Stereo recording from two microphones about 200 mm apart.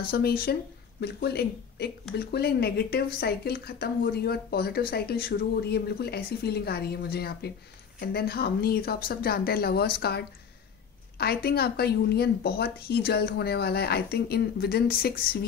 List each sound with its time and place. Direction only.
0.1 s speech: 50° left (ahead or behind)